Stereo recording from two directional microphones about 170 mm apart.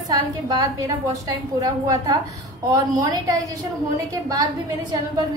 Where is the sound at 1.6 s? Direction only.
25° right (ahead or behind).